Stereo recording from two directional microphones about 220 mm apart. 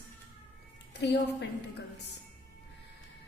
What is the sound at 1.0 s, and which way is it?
Speech, 50° left (ahead or behind).